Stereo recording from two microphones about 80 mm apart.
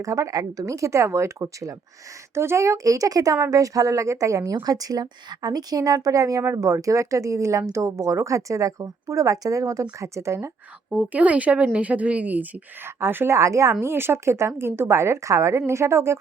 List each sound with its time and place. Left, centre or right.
0.0 s a woman's voice: right
10.9 s a woman's voice: centre; by 16.1 s right